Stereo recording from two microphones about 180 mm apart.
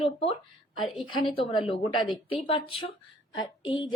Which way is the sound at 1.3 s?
30° left (ahead or behind).